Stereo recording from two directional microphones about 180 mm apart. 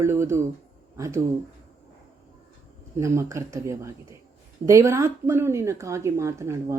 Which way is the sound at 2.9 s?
15° right (ahead or behind).